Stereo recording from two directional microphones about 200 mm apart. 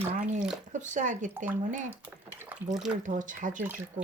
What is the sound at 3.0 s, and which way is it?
Speech, 40° right (ahead or behind).